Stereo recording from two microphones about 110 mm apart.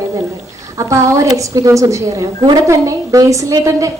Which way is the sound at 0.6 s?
30° right (ahead or behind).